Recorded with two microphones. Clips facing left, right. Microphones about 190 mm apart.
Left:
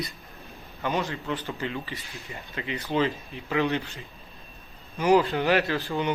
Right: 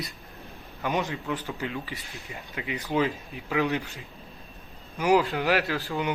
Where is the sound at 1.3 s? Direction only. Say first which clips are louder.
Left 1 dB; centre (ahead or behind).